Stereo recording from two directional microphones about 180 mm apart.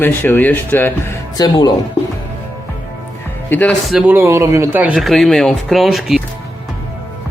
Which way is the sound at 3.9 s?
10° right (ahead or behind).